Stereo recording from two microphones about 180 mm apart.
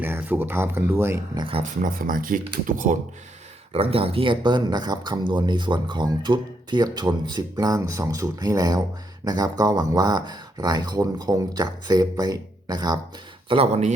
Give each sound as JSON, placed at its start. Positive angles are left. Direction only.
{"t": 0.0, "sound": "speech", "side_deg": -10}
{"t": 1.4, "sound": "speech", "side_deg": -30}
{"t": 1.8, "sound": "speech", "side_deg": -50}
{"t": 3.7, "sound": "speech", "side_deg": -35}
{"t": 13.5, "sound": "speech", "side_deg": -35}